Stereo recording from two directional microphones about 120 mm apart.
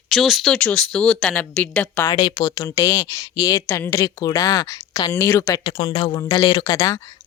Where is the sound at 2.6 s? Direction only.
25° left (ahead or behind).